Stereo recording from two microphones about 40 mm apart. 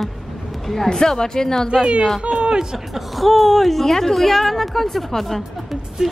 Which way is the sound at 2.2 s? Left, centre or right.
Right.